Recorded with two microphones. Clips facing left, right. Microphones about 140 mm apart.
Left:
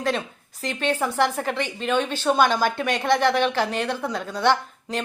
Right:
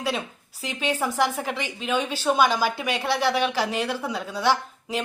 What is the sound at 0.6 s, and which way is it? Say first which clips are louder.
Speech: left 2 dB; 10° right (ahead or behind).